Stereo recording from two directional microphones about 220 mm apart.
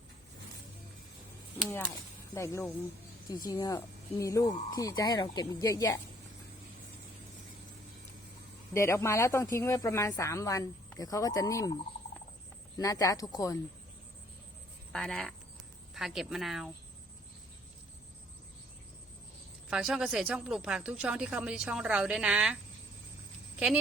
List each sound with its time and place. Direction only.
2.3 s speech: 15° left (ahead or behind)
8.7 s speech: 15° left (ahead or behind)
14.9 s speech: 5° left (ahead or behind)
19.7 s speech: centre (ahead or behind)
23.6 s speech: 5° right (ahead or behind)